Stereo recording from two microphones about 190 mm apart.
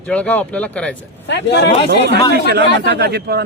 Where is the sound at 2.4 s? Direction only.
60° right (ahead or behind).